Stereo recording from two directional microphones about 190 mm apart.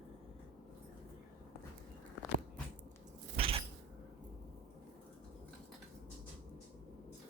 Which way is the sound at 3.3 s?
30° right (ahead or behind).